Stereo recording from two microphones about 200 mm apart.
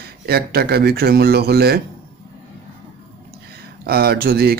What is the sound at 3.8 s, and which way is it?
Speech, 50° right (ahead or behind).